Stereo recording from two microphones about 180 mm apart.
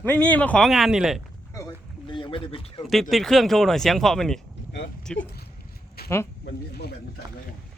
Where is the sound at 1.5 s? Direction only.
15° left (ahead or behind).